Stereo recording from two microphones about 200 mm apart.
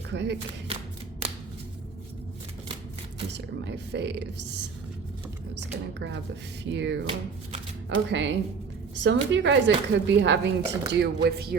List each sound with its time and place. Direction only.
0.1 s speech: 60° right (ahead or behind)
3.3 s a woman's voice: 60° right (ahead or behind)
8.1 s a woman's voice: 65° right (ahead or behind)